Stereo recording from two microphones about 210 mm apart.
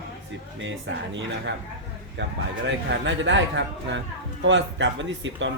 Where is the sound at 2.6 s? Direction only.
60° right (ahead or behind).